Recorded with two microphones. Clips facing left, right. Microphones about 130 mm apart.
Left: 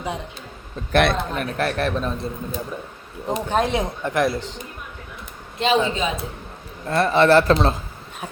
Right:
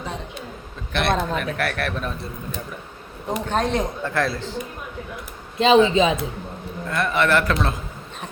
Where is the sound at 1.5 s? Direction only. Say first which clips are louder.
Left 3 dB; 30° left (ahead or behind).